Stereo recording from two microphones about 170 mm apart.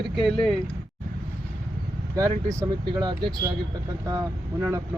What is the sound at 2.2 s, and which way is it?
Speech, 20° right (ahead or behind).